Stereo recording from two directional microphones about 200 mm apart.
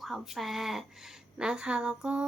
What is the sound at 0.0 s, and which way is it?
A woman's voice, centre (ahead or behind).